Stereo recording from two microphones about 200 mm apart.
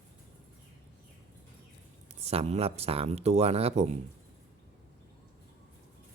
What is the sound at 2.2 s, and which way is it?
Speech, 30° right (ahead or behind).